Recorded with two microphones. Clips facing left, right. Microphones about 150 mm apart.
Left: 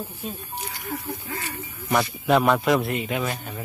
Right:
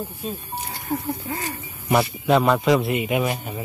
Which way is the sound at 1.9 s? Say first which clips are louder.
Right 2 dB; 5° right (ahead or behind).